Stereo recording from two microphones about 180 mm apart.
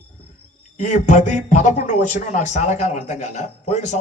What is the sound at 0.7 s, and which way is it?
A man's voice, 40° left (ahead or behind).